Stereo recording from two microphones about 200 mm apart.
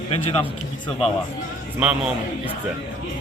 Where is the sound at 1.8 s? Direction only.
5° right (ahead or behind).